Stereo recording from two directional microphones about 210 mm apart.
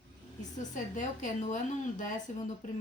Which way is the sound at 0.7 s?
35° left (ahead or behind).